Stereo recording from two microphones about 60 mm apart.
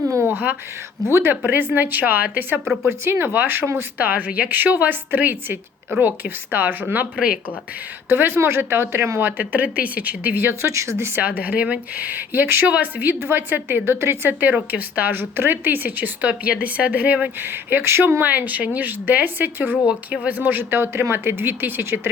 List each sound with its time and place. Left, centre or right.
0.2 s a sound: right
1.0 s a woman's voice: right
3.0 s a woman's voice: right
4.0 s a woman's voice: right
8.1 s a woman's voice: right
9.4 s speech: right
10.5 s speech: right
11.2 s speech: right
12.6 s a woman's voice: right